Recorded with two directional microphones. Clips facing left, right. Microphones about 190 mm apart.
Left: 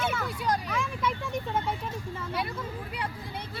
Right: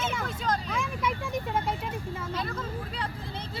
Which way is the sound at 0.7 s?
10° right (ahead or behind).